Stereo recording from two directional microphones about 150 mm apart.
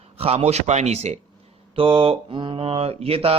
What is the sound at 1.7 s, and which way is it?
Mantra, 35° right (ahead or behind).